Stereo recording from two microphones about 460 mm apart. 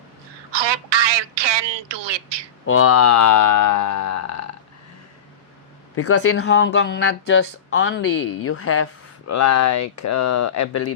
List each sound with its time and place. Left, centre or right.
0.5 s telephone: right
2.6 s speech: left
6.0 s speech: left